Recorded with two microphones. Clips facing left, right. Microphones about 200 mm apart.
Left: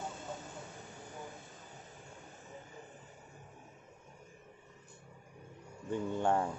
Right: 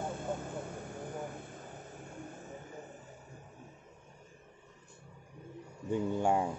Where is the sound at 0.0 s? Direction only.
55° right (ahead or behind).